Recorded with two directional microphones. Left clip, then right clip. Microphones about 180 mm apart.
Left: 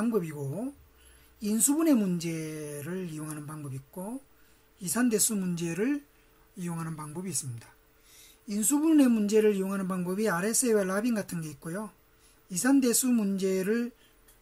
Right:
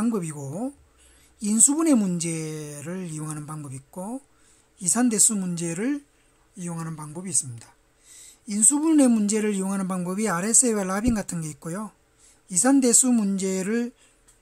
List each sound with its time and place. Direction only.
0.0 s speech: 35° right (ahead or behind)